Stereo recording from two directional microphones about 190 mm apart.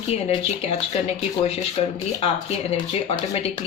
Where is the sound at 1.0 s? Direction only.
35° left (ahead or behind).